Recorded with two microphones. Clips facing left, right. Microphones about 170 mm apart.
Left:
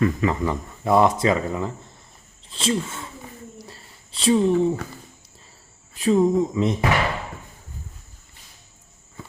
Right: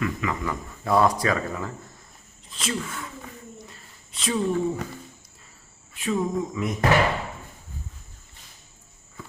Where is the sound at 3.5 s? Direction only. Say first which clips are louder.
Left 2 dB; 35° left (ahead or behind).